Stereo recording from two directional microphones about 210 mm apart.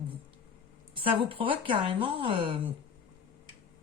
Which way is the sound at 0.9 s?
25° right (ahead or behind).